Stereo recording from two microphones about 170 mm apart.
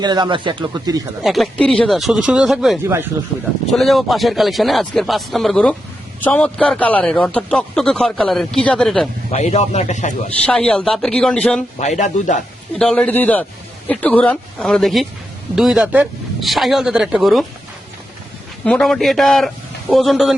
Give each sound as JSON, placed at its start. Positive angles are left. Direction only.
{"t": 0.0, "sound": "speech", "side_deg": -25}
{"t": 1.2, "sound": "a man's voice", "side_deg": 0}
{"t": 2.8, "sound": "speech", "side_deg": -15}
{"t": 3.7, "sound": "a man's voice", "side_deg": 0}
{"t": 9.3, "sound": "a man's voice", "side_deg": 40}
{"t": 10.4, "sound": "a man's voice", "side_deg": 5}
{"t": 11.8, "sound": "speech", "side_deg": 45}
{"t": 12.8, "sound": "a man's voice", "side_deg": 5}
{"t": 18.6, "sound": "a man's voice", "side_deg": 5}